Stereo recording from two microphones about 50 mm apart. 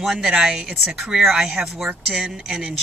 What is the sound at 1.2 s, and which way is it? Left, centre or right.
Speech, centre.